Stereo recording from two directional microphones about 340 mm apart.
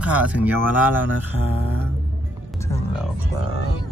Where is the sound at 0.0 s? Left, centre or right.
Centre.